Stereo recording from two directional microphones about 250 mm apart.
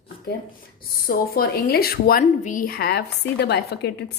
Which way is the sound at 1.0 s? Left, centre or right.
Left.